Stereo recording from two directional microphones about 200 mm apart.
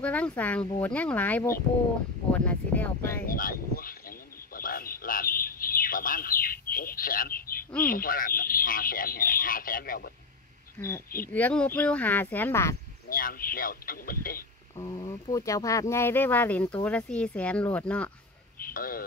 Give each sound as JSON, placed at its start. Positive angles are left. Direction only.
{"t": 0.0, "sound": "speech", "side_deg": 5}
{"t": 3.3, "sound": "speech", "side_deg": 45}
{"t": 4.6, "sound": "bird", "side_deg": 45}
{"t": 7.9, "sound": "speech", "side_deg": 45}
{"t": 10.8, "sound": "speech", "side_deg": 10}
{"t": 13.1, "sound": "speech", "side_deg": 45}
{"t": 14.8, "sound": "speech", "side_deg": 20}
{"t": 18.6, "sound": "speech", "side_deg": 45}